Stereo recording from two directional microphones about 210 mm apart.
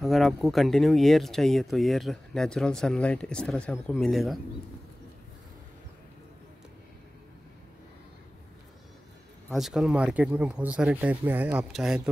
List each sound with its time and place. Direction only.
0.0 s speech: centre (ahead or behind)
9.5 s speech: centre (ahead or behind)